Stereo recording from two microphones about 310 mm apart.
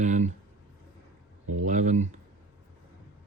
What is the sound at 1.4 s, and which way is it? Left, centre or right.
Speech, right.